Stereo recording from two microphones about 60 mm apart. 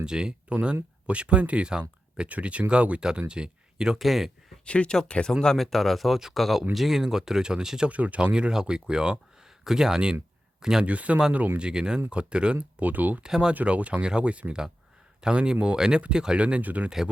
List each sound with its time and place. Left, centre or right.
0.0 s speech: centre
3.9 s speech: centre
4.6 s speech: centre
7.9 s speech: right
10.8 s speech: right
12.8 s speech: right
13.2 s speech: centre
13.5 s speech: right